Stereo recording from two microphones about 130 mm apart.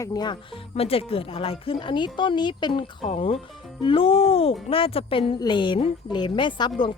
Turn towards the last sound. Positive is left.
turn(degrees=40)  # may be behind; listen again after turning